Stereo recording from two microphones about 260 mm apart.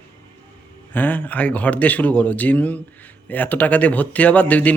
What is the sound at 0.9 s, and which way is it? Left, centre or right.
Speech, centre.